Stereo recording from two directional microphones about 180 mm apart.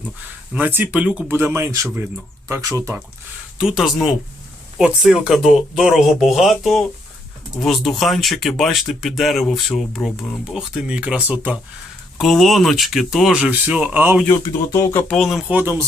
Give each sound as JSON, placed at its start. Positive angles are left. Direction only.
{"t": 0.5, "sound": "speech", "side_deg": -10}
{"t": 3.6, "sound": "speech", "side_deg": -5}
{"t": 14.3, "sound": "speech", "side_deg": 15}